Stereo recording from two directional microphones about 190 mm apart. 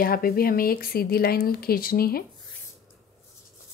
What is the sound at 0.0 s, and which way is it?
Speech, 50° left (ahead or behind).